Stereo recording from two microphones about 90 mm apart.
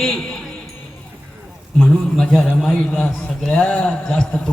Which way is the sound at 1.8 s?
10° left (ahead or behind).